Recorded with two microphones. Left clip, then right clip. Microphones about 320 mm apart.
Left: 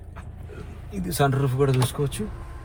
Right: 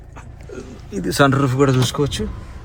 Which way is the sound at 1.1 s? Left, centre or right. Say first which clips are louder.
Right 8 dB; right.